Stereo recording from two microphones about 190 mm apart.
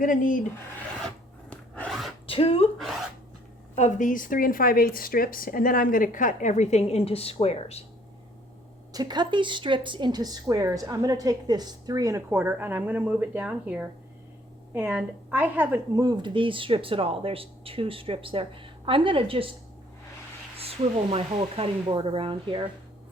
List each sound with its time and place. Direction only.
0.0 s speech: 45° left (ahead or behind)
1.0 s filing: 5° left (ahead or behind)
2.2 s speech: 30° left (ahead or behind)
2.7 s speech: centre (ahead or behind)
3.8 s speech: 40° left (ahead or behind)
8.9 s a woman's voice: 20° right (ahead or behind)
16.0 s a woman's voice: 25° right (ahead or behind)
20.6 s a woman's voice: 30° right (ahead or behind)